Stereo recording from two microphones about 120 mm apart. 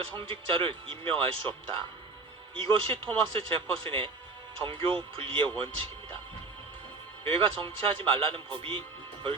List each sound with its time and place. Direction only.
0.1 s speech: 45° right (ahead or behind)
7.3 s speech: 45° right (ahead or behind)